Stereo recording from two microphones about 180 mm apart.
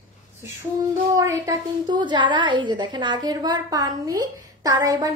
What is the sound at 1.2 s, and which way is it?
A woman's voice, 20° right (ahead or behind).